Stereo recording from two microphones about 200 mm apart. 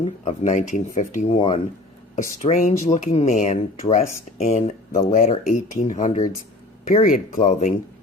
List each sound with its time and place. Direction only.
0.3 s speech: 35° left (ahead or behind)